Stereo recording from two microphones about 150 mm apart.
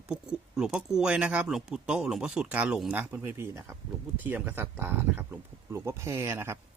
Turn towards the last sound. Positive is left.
turn(degrees=-20)  # may be behind; listen again after turning